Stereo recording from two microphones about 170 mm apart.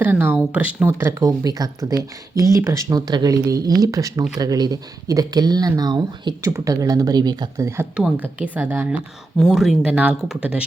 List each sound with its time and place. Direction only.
0.0 s a sound: 10° right (ahead or behind)
0.8 s speech: 15° right (ahead or behind)
7.9 s speech: 5° right (ahead or behind)
9.4 s speech: centre (ahead or behind)